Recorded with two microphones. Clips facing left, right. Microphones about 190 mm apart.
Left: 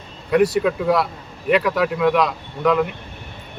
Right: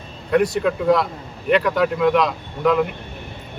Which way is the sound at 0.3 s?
5° left (ahead or behind).